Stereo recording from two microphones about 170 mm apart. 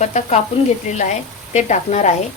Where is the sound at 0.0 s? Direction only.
45° left (ahead or behind).